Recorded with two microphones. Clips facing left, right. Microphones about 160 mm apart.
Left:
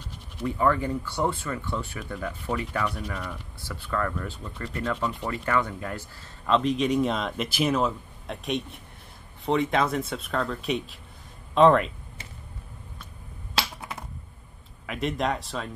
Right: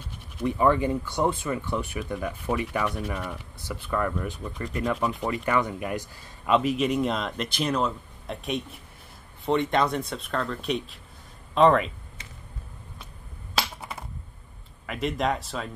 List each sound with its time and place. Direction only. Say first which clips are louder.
0.4 s speech: right 2 dB; 20° right (ahead or behind); by 11.9 s centre (ahead or behind)
13.6 s a sound: right 1 dB; centre (ahead or behind)
14.9 s speech: right 1 dB; centre (ahead or behind)